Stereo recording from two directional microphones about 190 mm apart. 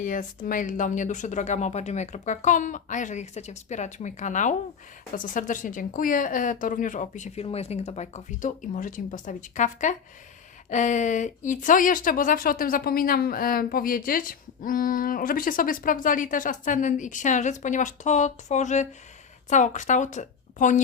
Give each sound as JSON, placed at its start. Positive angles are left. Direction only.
{"t": 0.0, "sound": "speech", "side_deg": 45}